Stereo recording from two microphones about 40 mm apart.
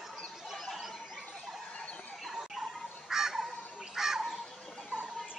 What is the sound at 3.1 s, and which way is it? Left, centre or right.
Crow, centre.